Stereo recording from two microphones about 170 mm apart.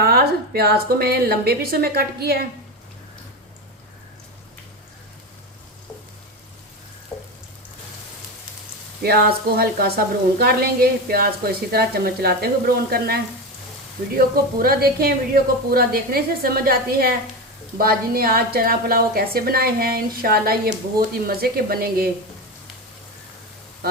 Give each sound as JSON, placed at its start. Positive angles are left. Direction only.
{"t": 0.0, "sound": "speech", "side_deg": -65}
{"t": 9.0, "sound": "speech", "side_deg": -65}
{"t": 14.2, "sound": "speech", "side_deg": -60}